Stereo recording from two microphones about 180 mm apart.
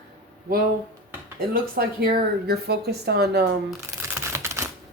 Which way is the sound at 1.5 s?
55° right (ahead or behind).